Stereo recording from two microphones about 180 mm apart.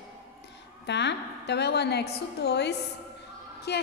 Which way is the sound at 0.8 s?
75° left (ahead or behind).